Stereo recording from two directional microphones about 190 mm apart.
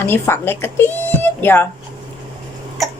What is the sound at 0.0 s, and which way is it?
Speech, 10° left (ahead or behind).